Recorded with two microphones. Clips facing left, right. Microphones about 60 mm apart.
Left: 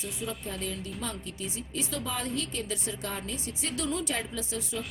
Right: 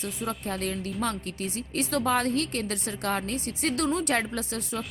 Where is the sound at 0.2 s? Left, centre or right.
Right.